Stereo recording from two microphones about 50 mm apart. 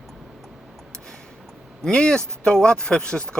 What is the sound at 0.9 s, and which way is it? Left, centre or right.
Speech, centre.